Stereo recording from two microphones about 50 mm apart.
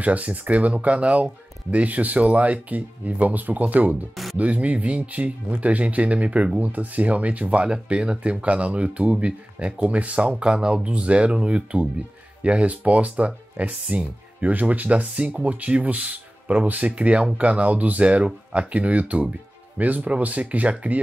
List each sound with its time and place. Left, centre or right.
0.0 s speech: right